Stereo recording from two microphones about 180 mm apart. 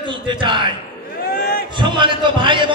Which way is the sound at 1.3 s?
55° left (ahead or behind).